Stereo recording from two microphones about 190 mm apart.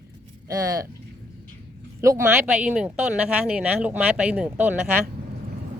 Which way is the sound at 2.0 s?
15° right (ahead or behind).